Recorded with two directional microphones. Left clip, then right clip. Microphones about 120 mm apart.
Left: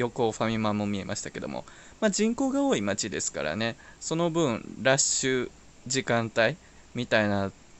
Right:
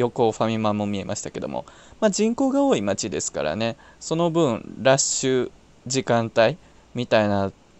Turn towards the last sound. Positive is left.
turn(degrees=-35)  # may be behind; listen again after turning